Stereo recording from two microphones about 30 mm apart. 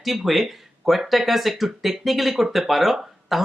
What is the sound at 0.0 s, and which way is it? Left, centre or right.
Speech, centre.